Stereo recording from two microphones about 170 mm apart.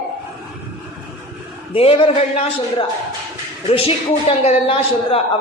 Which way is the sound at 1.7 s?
30° left (ahead or behind).